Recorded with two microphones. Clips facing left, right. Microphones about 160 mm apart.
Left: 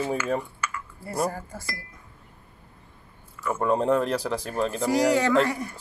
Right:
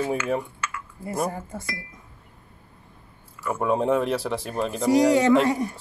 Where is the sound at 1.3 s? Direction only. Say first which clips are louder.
Right 2 dB; 20° right (ahead or behind).